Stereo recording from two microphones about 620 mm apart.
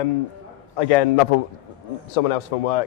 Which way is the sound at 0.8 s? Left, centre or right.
Left.